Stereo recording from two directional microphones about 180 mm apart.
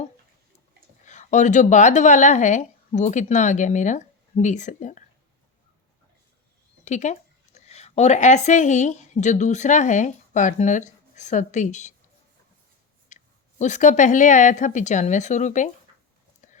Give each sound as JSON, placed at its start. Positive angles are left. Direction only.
{"t": 1.0, "sound": "a woman's voice", "side_deg": 40}
{"t": 6.8, "sound": "speech", "side_deg": 40}
{"t": 13.1, "sound": "a sound", "side_deg": 40}
{"t": 13.6, "sound": "speech", "side_deg": 40}
{"t": 16.4, "sound": "whispering", "side_deg": 45}